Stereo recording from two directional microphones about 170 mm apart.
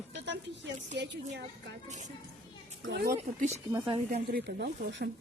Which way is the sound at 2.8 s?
75° right (ahead or behind).